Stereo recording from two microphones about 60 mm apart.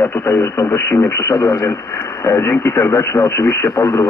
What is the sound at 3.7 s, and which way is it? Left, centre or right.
Speech, left.